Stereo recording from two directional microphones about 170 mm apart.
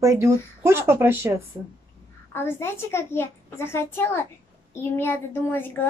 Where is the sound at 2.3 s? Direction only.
15° left (ahead or behind).